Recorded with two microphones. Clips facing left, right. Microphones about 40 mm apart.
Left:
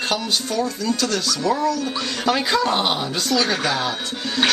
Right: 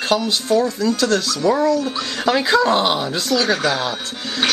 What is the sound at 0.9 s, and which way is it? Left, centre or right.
Speech, centre.